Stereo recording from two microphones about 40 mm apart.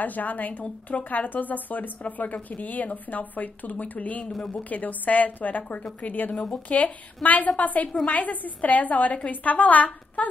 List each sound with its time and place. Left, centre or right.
0.0 s a woman's voice: left
6.3 s speech: centre
7.2 s a woman's voice: left
7.9 s a woman's voice: left
8.2 s a woman's voice: left